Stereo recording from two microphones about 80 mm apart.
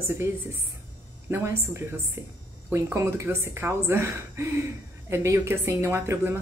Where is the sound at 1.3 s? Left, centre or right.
Right.